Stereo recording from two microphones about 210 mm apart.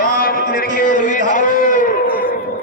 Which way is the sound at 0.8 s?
40° left (ahead or behind).